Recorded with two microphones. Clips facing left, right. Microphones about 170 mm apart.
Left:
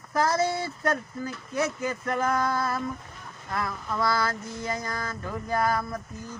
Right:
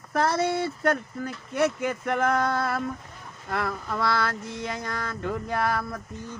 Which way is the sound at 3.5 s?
65° right (ahead or behind).